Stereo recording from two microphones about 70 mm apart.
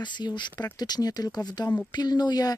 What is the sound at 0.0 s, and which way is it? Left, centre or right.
Speech, left.